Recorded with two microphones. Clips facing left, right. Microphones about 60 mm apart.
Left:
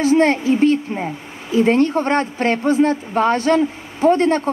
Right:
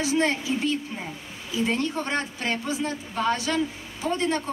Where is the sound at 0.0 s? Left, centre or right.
Left.